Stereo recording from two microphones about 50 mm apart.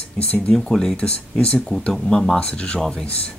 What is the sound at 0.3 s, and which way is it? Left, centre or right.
Speech, centre.